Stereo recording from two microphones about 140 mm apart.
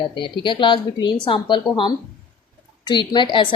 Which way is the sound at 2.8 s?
35° left (ahead or behind).